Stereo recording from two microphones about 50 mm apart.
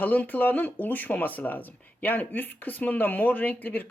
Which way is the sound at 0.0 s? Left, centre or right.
Left.